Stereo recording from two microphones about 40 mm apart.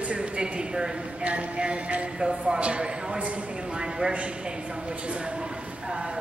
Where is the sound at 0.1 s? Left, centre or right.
Right.